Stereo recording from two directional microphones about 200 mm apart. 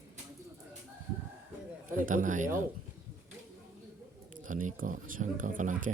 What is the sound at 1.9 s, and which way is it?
Speech, 40° right (ahead or behind).